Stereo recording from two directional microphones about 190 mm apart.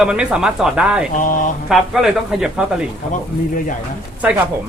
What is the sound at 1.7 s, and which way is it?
Speech, centre (ahead or behind).